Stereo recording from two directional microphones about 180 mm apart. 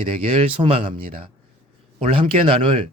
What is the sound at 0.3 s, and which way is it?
A man's voice, 30° right (ahead or behind).